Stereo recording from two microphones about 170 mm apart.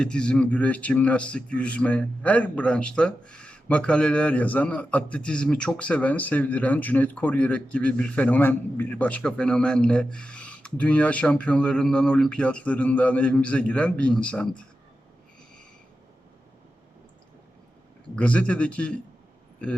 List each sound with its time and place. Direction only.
0.0 s a man's voice: 5° left (ahead or behind)
18.2 s a man's voice: 5° left (ahead or behind)